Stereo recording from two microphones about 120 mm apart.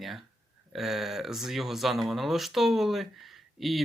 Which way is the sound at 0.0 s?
Centre (ahead or behind).